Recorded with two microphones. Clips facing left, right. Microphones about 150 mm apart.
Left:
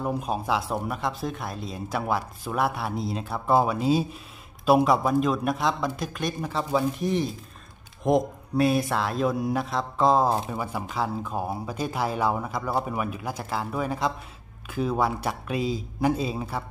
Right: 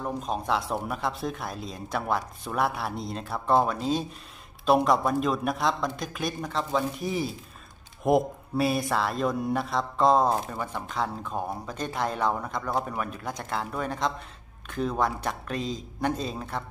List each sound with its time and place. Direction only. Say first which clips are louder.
0.0 s speech: left 2 dB; 10° left (ahead or behind)